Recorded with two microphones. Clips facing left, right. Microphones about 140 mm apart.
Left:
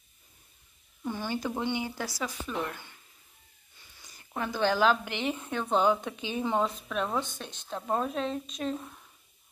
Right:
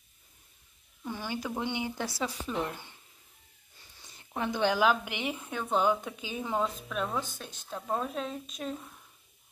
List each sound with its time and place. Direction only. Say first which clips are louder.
1.1 s a woman's voice: left 2 dB; 5° right (ahead or behind)
1.6 s speech: left 1 dB; 15° right (ahead or behind)
4.0 s a sound: even; 25° right (ahead or behind)
4.4 s a woman's voice: left 1 dB; 15° right (ahead or behind)